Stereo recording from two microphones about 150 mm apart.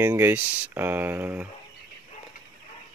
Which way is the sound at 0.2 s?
10° right (ahead or behind).